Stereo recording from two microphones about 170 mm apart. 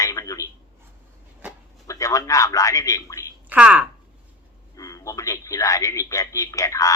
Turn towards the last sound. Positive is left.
turn(degrees=20)  # may be behind; listen again after turning